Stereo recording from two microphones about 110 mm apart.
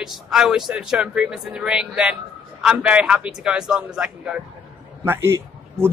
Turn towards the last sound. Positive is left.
turn(degrees=-20)  # may be behind; listen again after turning